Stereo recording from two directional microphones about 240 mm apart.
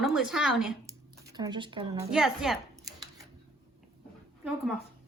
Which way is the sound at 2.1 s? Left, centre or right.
Centre.